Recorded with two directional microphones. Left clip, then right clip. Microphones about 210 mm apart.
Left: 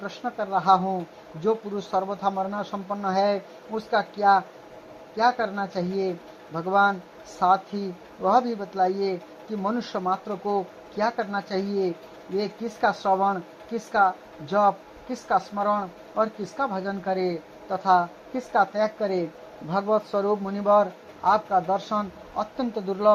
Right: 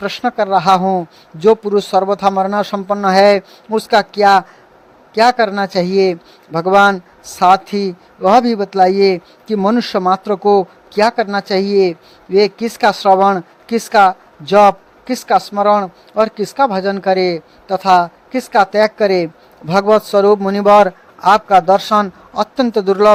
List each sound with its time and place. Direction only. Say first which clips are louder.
0.0 s speech: right 14 dB; 40° right (ahead or behind)